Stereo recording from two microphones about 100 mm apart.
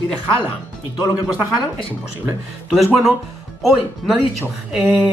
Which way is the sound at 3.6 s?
5° right (ahead or behind).